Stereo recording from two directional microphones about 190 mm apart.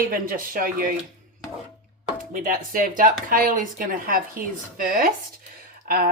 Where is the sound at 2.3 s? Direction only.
45° right (ahead or behind).